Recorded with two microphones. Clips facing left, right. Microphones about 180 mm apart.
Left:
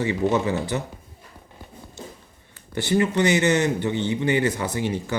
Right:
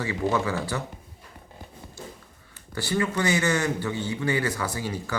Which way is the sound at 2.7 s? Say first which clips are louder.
Left 5 dB; 20° left (ahead or behind).